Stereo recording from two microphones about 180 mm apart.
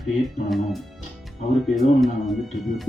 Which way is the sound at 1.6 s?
Centre (ahead or behind).